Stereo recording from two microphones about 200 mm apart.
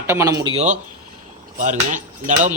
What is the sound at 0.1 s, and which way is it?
Speech, 15° right (ahead or behind).